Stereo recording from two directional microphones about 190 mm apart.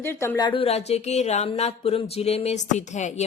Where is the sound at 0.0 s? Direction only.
10° left (ahead or behind).